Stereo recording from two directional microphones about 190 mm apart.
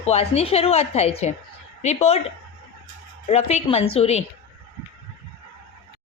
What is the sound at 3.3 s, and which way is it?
Speech, 35° left (ahead or behind).